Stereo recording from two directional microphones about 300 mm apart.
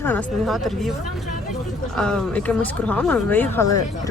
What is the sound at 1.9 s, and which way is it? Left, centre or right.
Speech, centre.